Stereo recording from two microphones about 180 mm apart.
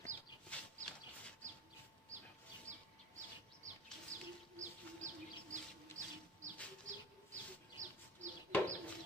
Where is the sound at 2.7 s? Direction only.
40° right (ahead or behind).